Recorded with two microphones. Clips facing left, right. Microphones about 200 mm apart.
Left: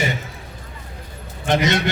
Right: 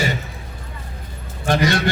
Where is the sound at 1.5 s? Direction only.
20° left (ahead or behind).